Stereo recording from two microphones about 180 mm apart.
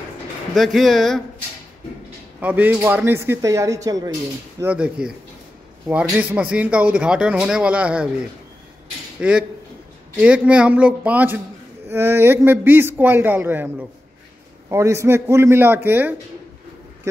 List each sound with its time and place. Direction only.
0.6 s a man's voice: centre (ahead or behind)
2.4 s a man's voice: 10° right (ahead or behind)
4.6 s a man's voice: 10° right (ahead or behind)
9.2 s a man's voice: 5° right (ahead or behind)